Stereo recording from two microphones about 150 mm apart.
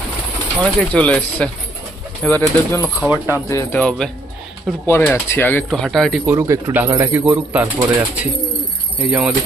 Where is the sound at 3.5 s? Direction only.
15° left (ahead or behind).